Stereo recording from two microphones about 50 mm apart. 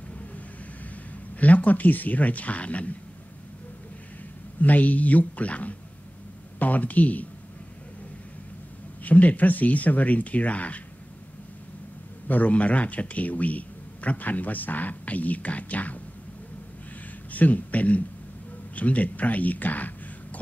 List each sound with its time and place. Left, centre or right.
1.3 s a man's voice: left
4.6 s a man's voice: left
9.0 s a man's voice: left
12.3 s a man's voice: left
17.3 s a man's voice: left